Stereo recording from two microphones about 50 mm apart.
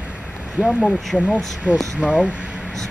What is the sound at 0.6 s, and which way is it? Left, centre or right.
Speech, right.